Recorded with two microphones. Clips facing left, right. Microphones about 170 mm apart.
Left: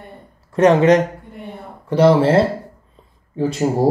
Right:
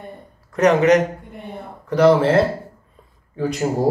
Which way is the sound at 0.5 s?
30° left (ahead or behind).